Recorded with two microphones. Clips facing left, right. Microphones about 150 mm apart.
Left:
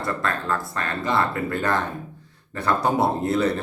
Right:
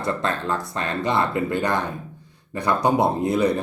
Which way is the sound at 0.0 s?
25° right (ahead or behind).